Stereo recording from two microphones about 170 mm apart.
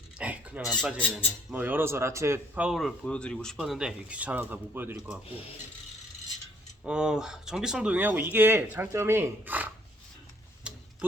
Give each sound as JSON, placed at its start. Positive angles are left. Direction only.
{"t": 0.2, "sound": "a sound", "side_deg": -10}
{"t": 0.7, "sound": "speech", "side_deg": 5}
{"t": 1.5, "sound": "speech", "side_deg": -10}
{"t": 6.8, "sound": "speech", "side_deg": -5}
{"t": 10.7, "sound": "mechanisms", "side_deg": -5}